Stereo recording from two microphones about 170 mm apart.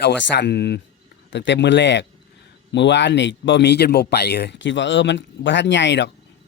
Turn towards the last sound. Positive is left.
turn(degrees=90)